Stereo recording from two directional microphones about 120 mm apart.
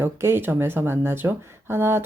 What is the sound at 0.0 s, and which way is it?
Speech, 20° right (ahead or behind).